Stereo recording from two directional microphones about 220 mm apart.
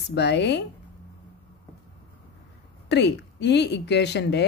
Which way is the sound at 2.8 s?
50° left (ahead or behind).